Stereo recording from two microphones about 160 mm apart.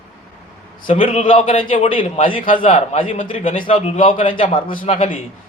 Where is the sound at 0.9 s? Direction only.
35° left (ahead or behind).